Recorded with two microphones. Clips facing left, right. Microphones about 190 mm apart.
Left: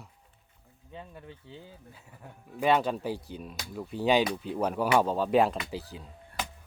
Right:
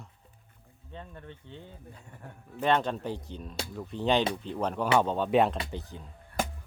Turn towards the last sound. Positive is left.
turn(degrees=-50)  # may be behind; listen again after turning